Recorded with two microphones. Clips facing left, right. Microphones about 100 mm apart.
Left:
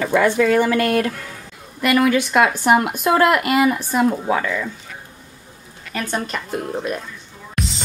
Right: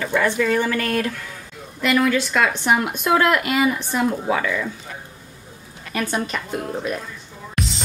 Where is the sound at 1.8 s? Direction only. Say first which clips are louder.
Left 2 dB; 5° left (ahead or behind).